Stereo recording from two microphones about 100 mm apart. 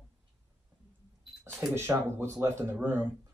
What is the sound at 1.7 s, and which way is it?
Speech, 25° right (ahead or behind).